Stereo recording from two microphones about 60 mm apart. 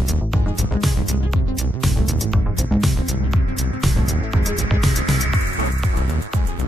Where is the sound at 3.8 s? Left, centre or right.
Centre.